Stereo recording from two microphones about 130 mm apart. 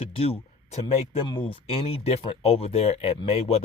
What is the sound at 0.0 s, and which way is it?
Speech, 50° left (ahead or behind).